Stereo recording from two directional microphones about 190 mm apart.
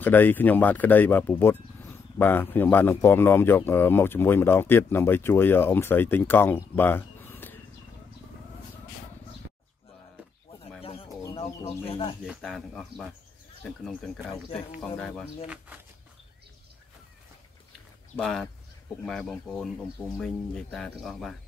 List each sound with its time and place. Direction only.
0.0 s a man's voice: 10° left (ahead or behind)
10.8 s bird: 30° left (ahead or behind)
11.3 s speech: 30° left (ahead or behind)
12.3 s speech: centre (ahead or behind)
15.4 s speech: 5° right (ahead or behind)
18.1 s speech: 5° left (ahead or behind)